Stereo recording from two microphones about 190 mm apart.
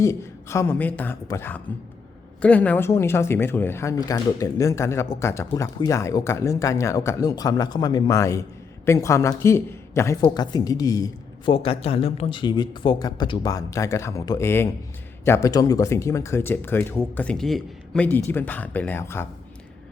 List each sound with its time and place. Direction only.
0.0 s a man's voice: 15° left (ahead or behind)